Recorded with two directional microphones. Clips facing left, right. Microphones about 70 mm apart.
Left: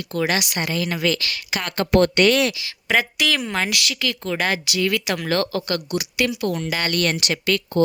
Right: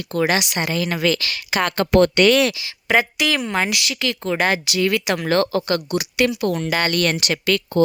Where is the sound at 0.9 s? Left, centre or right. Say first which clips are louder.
Right 2 dB; right.